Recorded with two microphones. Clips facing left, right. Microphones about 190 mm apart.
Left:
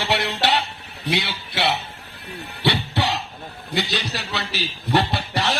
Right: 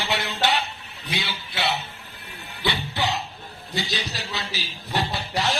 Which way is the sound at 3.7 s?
65° left (ahead or behind).